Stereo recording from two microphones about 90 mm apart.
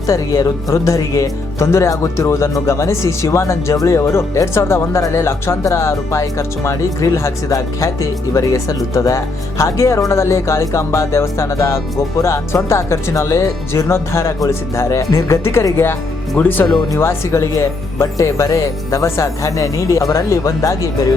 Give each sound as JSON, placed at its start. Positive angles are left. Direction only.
{"t": 0.1, "sound": "speech", "side_deg": 35}